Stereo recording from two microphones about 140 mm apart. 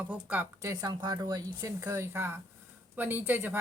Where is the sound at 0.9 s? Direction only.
30° right (ahead or behind).